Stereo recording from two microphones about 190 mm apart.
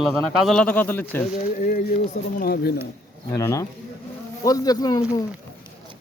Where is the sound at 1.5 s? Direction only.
45° left (ahead or behind).